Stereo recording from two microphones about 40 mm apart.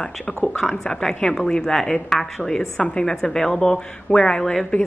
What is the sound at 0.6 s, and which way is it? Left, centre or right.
A woman's voice, centre.